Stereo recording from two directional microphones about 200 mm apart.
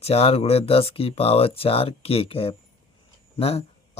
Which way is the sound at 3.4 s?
30° left (ahead or behind).